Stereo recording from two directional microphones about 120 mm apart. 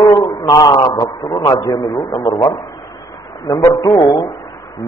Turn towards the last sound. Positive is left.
turn(degrees=40)  # may be behind; listen again after turning